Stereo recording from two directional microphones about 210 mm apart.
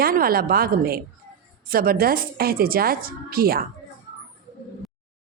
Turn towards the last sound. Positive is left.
turn(degrees=-45)  # may be behind; listen again after turning